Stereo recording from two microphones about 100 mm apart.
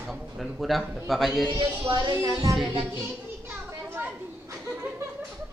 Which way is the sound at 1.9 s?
45° right (ahead or behind).